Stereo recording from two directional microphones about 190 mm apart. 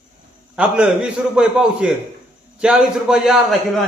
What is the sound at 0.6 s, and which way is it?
A man's voice, 5° right (ahead or behind).